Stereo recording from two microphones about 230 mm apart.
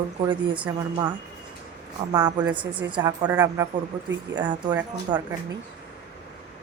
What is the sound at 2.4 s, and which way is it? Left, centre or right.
Speech, centre.